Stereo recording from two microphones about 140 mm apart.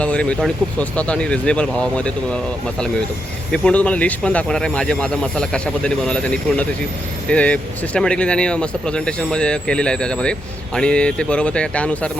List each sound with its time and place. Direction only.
0.0 s speech: 10° left (ahead or behind)